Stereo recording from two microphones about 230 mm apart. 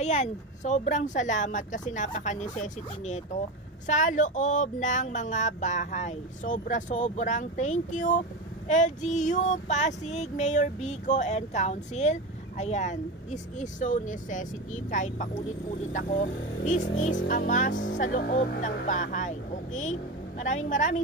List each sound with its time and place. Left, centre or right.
0.0 s child singing: left